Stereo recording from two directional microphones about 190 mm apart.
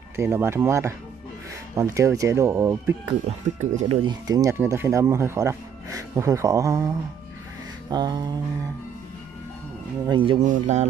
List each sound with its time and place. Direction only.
0.1 s speech: 15° right (ahead or behind)
3.1 s speech: 35° right (ahead or behind)
4.0 s speech: 20° right (ahead or behind)
7.9 s a sound: 20° right (ahead or behind)
10.0 s a sound: 25° right (ahead or behind)
10.4 s speech: 40° right (ahead or behind)